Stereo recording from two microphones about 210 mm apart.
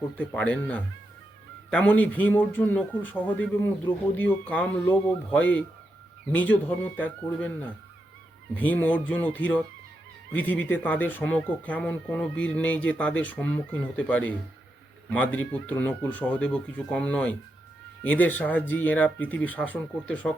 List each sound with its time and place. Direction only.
0.2 s speech: 5° left (ahead or behind)